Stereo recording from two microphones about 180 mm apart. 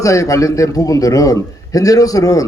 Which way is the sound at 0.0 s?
15° left (ahead or behind).